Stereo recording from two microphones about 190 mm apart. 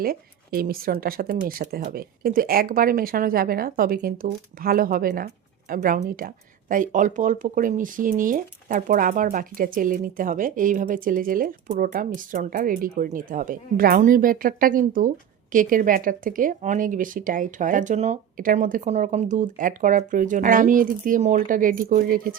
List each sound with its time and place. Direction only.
0.0 s speech: 50° right (ahead or behind)